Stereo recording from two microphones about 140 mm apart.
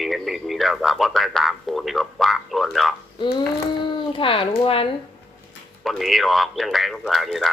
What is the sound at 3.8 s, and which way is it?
Speech, 40° left (ahead or behind).